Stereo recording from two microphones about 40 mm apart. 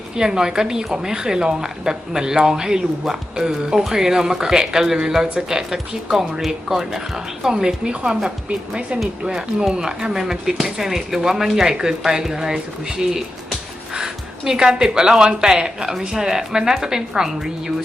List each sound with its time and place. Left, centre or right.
0.2 s a woman's voice: centre